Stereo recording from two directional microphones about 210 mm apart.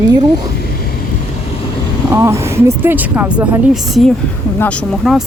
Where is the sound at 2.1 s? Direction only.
15° right (ahead or behind).